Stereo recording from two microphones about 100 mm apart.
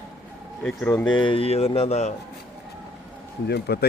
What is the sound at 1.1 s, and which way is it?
Speech, 55° left (ahead or behind).